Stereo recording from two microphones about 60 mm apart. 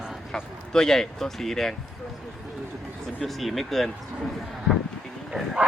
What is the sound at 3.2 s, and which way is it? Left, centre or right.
Speech, centre.